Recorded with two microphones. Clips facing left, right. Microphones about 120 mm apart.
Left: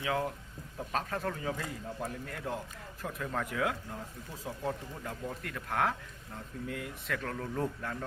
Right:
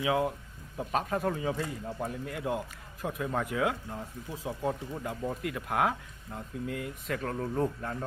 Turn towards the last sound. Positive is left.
turn(degrees=-20)  # may be behind; listen again after turning